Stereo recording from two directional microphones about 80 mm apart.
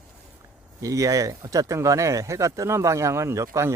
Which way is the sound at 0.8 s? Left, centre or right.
Right.